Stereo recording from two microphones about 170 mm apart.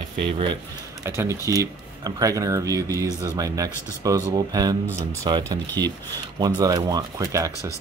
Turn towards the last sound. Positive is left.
turn(degrees=-20)  # may be behind; listen again after turning